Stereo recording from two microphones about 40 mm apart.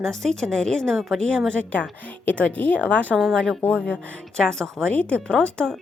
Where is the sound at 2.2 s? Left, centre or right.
Left.